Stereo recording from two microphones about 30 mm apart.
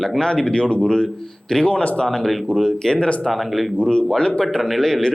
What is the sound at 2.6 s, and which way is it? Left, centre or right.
Speech, left.